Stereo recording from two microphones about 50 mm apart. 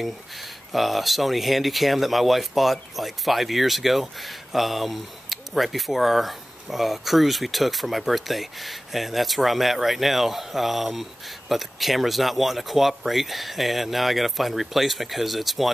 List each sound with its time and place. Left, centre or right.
0.7 s speech: centre